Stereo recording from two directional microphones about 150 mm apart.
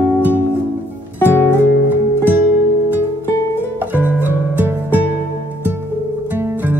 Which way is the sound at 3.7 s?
15° right (ahead or behind).